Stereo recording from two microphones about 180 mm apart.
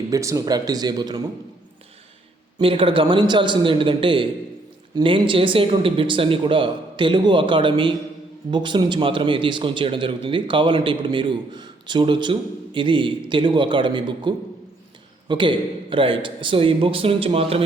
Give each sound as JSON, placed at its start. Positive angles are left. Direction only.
{"t": 0.1, "sound": "a man's voice", "side_deg": -15}
{"t": 2.6, "sound": "a man's voice", "side_deg": -30}